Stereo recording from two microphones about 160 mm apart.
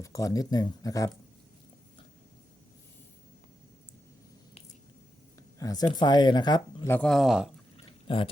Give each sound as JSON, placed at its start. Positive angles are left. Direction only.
{"t": 0.0, "sound": "speech", "side_deg": 20}
{"t": 5.5, "sound": "speech", "side_deg": 20}
{"t": 6.9, "sound": "speech", "side_deg": 5}
{"t": 8.0, "sound": "speech", "side_deg": 30}